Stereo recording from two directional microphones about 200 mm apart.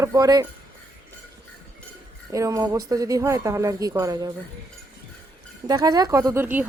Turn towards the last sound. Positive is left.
turn(degrees=-10)  # may be behind; listen again after turning